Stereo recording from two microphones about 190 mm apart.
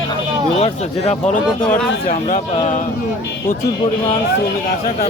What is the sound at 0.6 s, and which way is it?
Speech, 35° left (ahead or behind).